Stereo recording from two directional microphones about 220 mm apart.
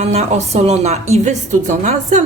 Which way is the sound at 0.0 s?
30° right (ahead or behind).